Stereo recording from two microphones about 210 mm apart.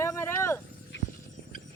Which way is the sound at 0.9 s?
60° left (ahead or behind).